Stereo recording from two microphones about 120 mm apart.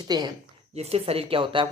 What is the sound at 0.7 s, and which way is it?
Speech, 60° right (ahead or behind).